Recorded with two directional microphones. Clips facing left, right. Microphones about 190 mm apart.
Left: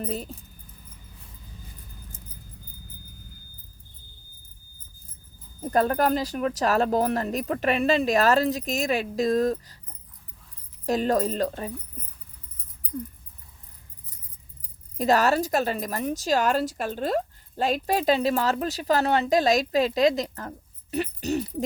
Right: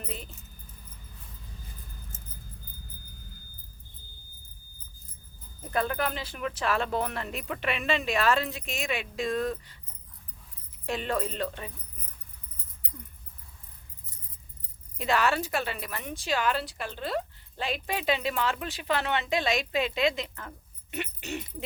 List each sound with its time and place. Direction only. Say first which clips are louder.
0.0 s a woman's voice: left 9 dB; 40° left (ahead or behind)
5.5 s a woman's voice: left 7 dB; 40° left (ahead or behind)
10.8 s a woman's voice: left 7 dB; 40° left (ahead or behind)
14.9 s a woman's voice: left 6 dB; 40° left (ahead or behind)